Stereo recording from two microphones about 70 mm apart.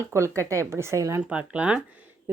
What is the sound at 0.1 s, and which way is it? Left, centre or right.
Speech, right.